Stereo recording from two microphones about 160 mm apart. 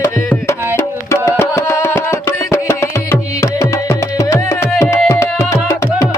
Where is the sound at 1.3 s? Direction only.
15° left (ahead or behind).